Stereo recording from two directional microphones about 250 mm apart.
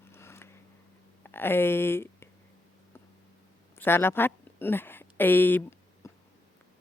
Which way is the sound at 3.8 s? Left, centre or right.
Centre.